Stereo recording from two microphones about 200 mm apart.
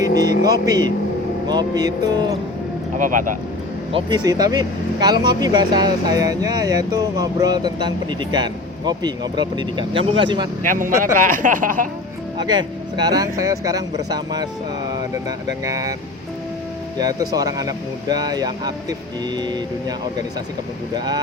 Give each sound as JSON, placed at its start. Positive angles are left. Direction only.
{"t": 0.2, "sound": "speech", "side_deg": -20}
{"t": 3.0, "sound": "speech", "side_deg": -40}
{"t": 3.9, "sound": "speech", "side_deg": -20}
{"t": 10.6, "sound": "speech", "side_deg": -40}
{"t": 12.4, "sound": "speech", "side_deg": -20}
{"t": 15.6, "sound": "speech", "side_deg": -15}
{"t": 17.0, "sound": "speech", "side_deg": -20}
{"t": 20.9, "sound": "speech", "side_deg": -20}